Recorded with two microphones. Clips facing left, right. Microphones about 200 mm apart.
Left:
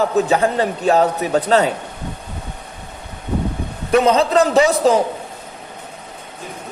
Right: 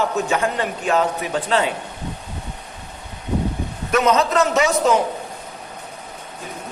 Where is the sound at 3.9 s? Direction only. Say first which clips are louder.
Left 4 dB; 30° left (ahead or behind).